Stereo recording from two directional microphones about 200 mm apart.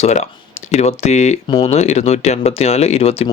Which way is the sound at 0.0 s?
35° left (ahead or behind).